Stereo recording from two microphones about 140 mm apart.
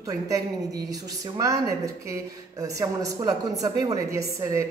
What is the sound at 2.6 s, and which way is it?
A woman's voice, 25° right (ahead or behind).